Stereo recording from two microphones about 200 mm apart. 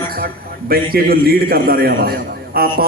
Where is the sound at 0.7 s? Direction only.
50° right (ahead or behind).